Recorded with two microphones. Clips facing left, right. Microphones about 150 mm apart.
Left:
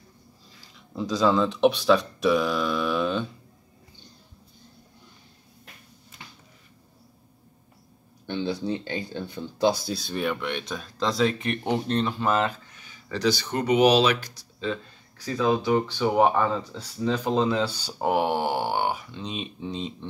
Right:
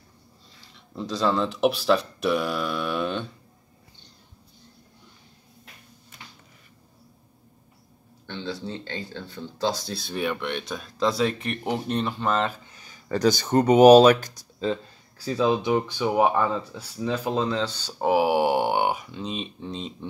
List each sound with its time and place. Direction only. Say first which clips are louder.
0.7 s speech: left 3 dB; centre (ahead or behind)
8.3 s speech: left 5 dB; 15° left (ahead or behind)
9.9 s speech: even; centre (ahead or behind)
12.7 s speech: right 5 dB; 40° right (ahead or behind)
14.7 s speech: right 2 dB; 30° right (ahead or behind)
15.7 s speech: left 1 dB; 10° right (ahead or behind)
17.4 s speech: left 2 dB; 10° left (ahead or behind)
18.0 s speech: right 3 dB; 5° right (ahead or behind)
19.1 s speech: right 2 dB; centre (ahead or behind)